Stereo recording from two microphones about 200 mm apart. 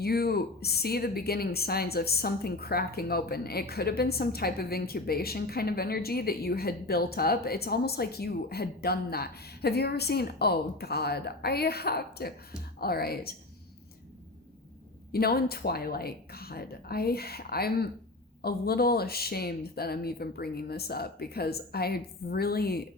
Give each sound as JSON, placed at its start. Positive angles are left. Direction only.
{"t": 0.0, "sound": "a woman's voice", "side_deg": 50}
{"t": 15.1, "sound": "a woman's voice", "side_deg": 50}